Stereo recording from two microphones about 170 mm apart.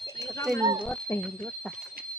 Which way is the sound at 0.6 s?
20° right (ahead or behind).